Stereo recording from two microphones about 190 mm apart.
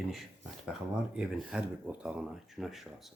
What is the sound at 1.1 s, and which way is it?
Speech, 5° right (ahead or behind).